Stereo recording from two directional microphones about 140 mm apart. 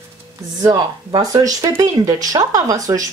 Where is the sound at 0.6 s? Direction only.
25° right (ahead or behind).